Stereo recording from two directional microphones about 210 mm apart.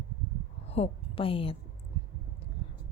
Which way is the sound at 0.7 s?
25° left (ahead or behind).